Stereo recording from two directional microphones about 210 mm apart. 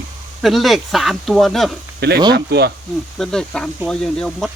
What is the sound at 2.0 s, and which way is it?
Speech, 50° right (ahead or behind).